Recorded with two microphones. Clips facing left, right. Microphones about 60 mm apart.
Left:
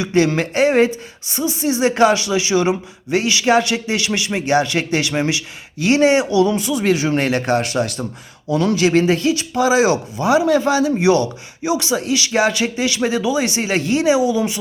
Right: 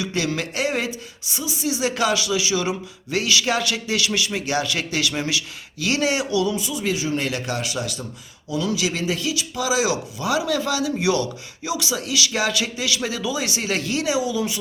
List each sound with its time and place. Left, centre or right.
0.0 s a woman's voice: left
6.5 s speech: left
7.3 s a woman's voice: left